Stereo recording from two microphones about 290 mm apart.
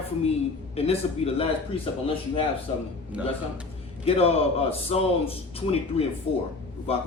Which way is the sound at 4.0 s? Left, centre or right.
Centre.